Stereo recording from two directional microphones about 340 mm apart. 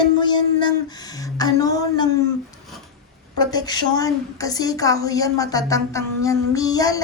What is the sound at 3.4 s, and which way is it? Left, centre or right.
A woman's voice, centre.